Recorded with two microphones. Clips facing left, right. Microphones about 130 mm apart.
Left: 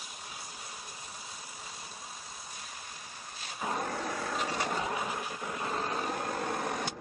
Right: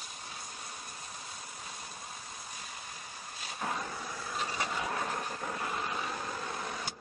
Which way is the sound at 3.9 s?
80° left.